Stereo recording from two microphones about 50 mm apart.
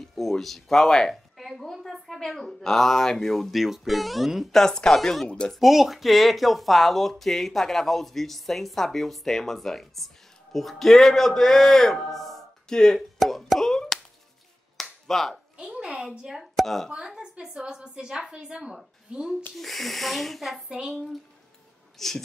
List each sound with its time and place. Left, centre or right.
0.0 s a woman's voice: centre
4.6 s speech: centre
5.5 s speech: centre
13.2 s a sound: centre
14.8 s finger snapping: centre
15.5 s a sound: centre
16.2 s a woman's voice: centre
16.5 s speech: centre
16.9 s a woman's voice: centre
19.5 s speech: centre
20.6 s speech: centre
21.9 s speech: centre